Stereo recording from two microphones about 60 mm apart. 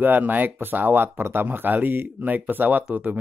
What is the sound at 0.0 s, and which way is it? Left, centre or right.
Speech, right.